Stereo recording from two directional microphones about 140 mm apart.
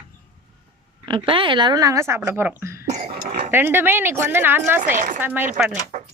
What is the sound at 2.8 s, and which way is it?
Throat clearing, 55° right (ahead or behind).